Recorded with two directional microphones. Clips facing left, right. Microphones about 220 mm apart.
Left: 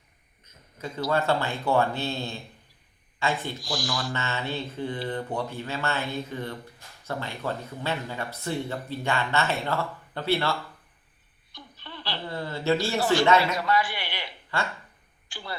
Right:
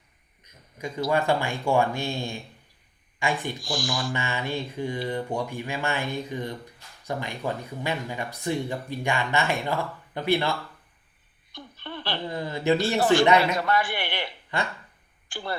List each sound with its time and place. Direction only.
0.4 s speech: 15° right (ahead or behind)
3.6 s speech: 50° right (ahead or behind)
3.9 s speech: 15° right (ahead or behind)
11.5 s a sound: 50° right (ahead or behind)
12.3 s speech: 15° right (ahead or behind)
13.7 s a sound: 50° right (ahead or behind)
14.5 s speech: 20° right (ahead or behind)
15.3 s speech: 50° right (ahead or behind)